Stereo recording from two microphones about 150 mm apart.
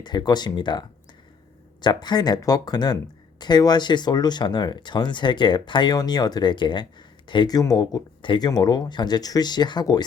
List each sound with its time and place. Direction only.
0.0 s speech: 30° left (ahead or behind)